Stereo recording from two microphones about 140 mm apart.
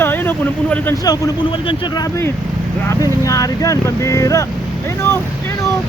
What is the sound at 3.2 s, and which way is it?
Speech, 25° left (ahead or behind).